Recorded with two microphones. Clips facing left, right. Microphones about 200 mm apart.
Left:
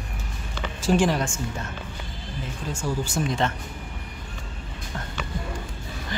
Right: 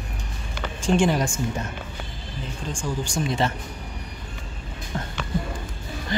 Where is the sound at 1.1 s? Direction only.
20° right (ahead or behind).